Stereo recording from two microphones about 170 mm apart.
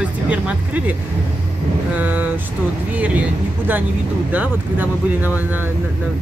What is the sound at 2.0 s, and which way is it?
Speech, 10° right (ahead or behind).